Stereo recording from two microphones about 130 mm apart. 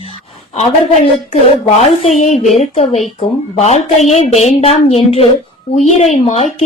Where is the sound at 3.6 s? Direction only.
60° left (ahead or behind).